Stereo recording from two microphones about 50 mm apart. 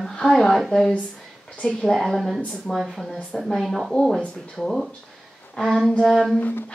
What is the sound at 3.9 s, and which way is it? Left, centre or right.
Speech, centre.